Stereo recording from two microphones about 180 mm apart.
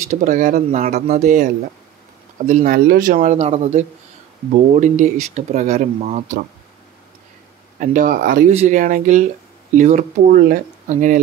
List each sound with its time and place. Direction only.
0.1 s speech: 45° right (ahead or behind)
7.8 s speech: 50° right (ahead or behind)